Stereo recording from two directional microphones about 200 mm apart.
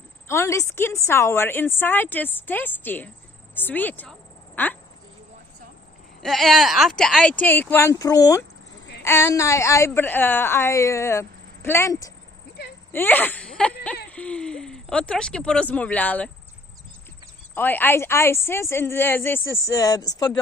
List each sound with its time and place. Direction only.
0.3 s a woman's voice: 15° left (ahead or behind)
6.2 s a woman's voice: centre (ahead or behind)
17.5 s a woman's voice: 10° left (ahead or behind)